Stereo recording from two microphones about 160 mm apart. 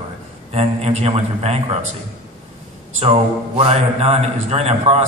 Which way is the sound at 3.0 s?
40° right (ahead or behind).